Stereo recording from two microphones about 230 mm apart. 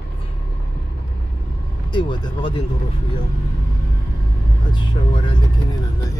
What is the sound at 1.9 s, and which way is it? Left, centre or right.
Speech, centre.